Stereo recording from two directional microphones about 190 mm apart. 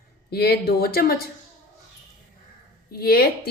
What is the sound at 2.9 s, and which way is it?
Speech, 55° left (ahead or behind).